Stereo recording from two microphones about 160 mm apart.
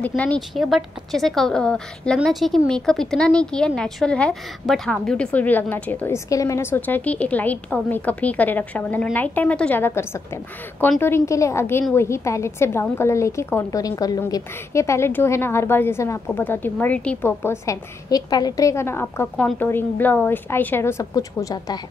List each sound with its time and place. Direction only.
0.0 s a woman's voice: 10° left (ahead or behind)